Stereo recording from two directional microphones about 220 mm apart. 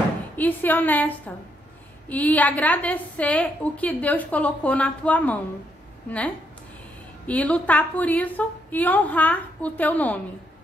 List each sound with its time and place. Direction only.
0.4 s a woman's voice: 10° left (ahead or behind)